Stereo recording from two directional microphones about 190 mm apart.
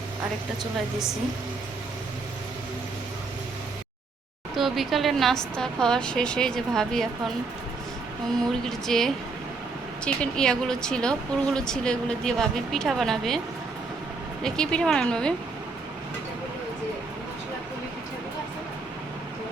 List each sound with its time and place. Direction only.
4.5 s speech: centre (ahead or behind)
8.4 s speech: centre (ahead or behind)
14.4 s speech: 5° left (ahead or behind)